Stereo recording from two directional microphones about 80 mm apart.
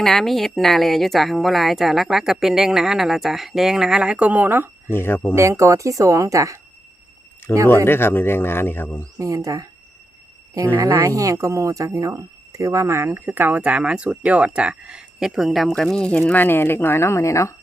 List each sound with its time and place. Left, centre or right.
0.0 s speech: centre; by 4.7 s right
4.9 s speech: left
5.3 s speech: right
7.5 s speech: left
9.1 s speech: right
11.0 s speech: right; by 17.5 s left